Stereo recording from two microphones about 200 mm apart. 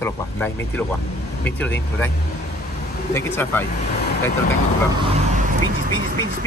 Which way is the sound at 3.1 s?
10° left (ahead or behind).